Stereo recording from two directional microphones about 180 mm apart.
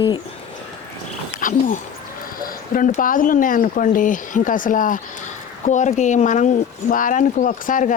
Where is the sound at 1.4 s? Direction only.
45° left (ahead or behind).